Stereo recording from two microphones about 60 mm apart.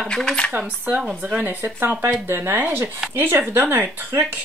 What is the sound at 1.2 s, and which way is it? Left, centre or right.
Speech, right.